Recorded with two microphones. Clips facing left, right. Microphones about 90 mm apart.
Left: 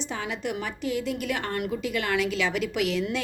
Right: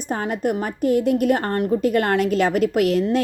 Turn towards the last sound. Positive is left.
turn(degrees=-45)  # may be behind; listen again after turning